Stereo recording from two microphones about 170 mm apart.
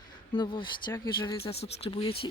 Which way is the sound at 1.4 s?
35° left (ahead or behind).